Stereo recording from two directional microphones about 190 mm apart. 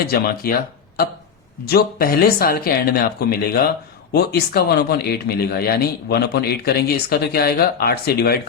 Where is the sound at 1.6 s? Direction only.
55° left (ahead or behind).